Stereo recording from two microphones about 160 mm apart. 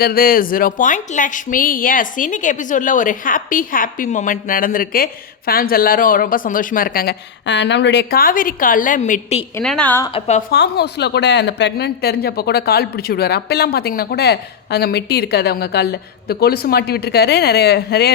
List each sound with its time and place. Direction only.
0.0 s a woman's voice: 65° left (ahead or behind); by 9.4 s 50° left (ahead or behind)
9.6 s a woman's voice: 10° left (ahead or behind)
10.2 s a woman's voice: 45° left (ahead or behind)
10.5 s a woman's voice: 90° left